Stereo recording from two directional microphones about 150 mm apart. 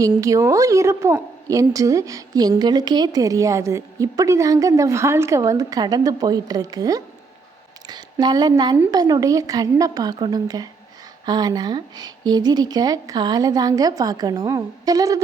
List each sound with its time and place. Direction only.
0.2 s a woman's voice: 20° right (ahead or behind)